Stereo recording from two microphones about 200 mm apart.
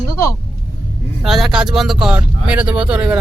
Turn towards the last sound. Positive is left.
turn(degrees=-5)  # may be behind; listen again after turning